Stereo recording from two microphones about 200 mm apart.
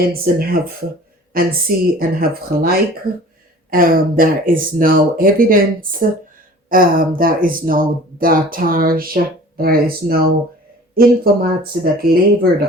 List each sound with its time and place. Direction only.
0.0 s speech: 50° right (ahead or behind)